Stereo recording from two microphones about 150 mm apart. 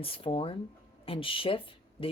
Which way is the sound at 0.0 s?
40° left (ahead or behind).